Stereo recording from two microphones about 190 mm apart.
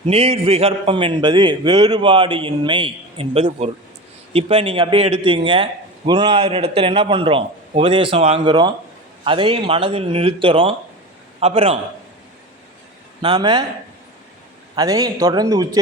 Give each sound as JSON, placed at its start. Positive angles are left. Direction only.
{"t": 0.0, "sound": "a man's voice", "side_deg": -30}
{"t": 13.2, "sound": "a man's voice", "side_deg": -25}
{"t": 14.8, "sound": "a man's voice", "side_deg": -20}